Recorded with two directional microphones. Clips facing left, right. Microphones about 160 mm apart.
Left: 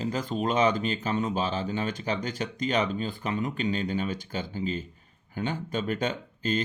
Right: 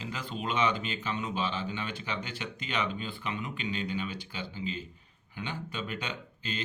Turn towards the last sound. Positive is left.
turn(degrees=45)  # may be behind; listen again after turning